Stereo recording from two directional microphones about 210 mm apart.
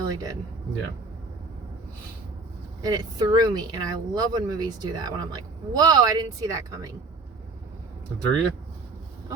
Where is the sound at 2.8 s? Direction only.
20° right (ahead or behind).